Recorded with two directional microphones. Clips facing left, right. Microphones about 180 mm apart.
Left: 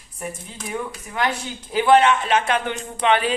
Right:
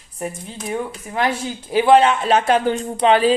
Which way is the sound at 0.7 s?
30° right (ahead or behind).